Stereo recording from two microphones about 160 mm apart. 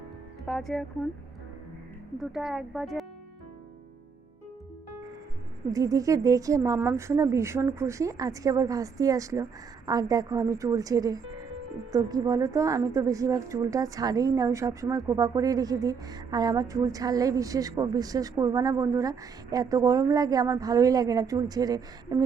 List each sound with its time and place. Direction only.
0.4 s speech: centre (ahead or behind)
2.1 s speech: centre (ahead or behind)
5.7 s speech: 20° right (ahead or behind)